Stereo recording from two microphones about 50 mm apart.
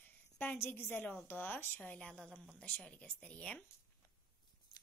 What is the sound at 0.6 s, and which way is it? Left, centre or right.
Speech, left.